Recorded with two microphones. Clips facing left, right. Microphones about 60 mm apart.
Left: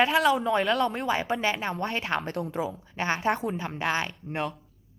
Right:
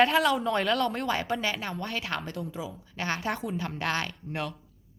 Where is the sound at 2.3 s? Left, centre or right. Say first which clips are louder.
Left 6 dB; left.